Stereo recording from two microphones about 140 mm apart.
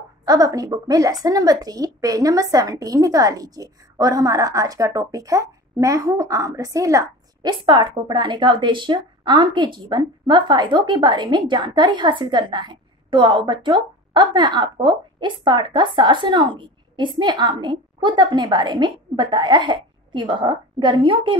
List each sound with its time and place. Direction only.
0.2 s a woman's voice: 25° right (ahead or behind)